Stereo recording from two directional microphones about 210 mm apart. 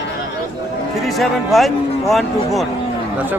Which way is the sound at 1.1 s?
Centre (ahead or behind).